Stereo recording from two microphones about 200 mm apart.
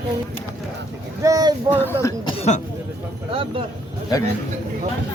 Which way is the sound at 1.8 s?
10° left (ahead or behind).